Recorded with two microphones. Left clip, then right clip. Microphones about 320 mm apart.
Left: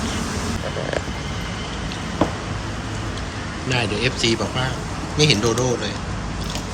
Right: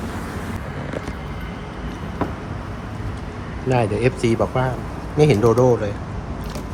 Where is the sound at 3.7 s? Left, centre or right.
Centre.